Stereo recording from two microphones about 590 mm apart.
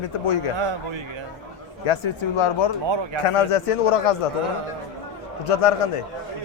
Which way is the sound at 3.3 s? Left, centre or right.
Left.